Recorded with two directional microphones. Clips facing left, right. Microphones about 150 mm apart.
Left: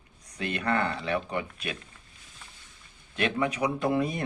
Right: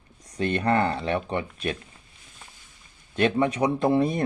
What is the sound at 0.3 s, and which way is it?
Speech, 35° right (ahead or behind).